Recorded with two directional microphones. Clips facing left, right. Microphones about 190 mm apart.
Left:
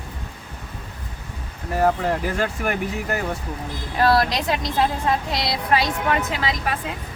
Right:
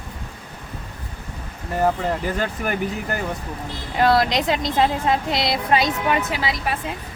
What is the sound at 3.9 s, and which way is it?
A woman's voice, 20° right (ahead or behind).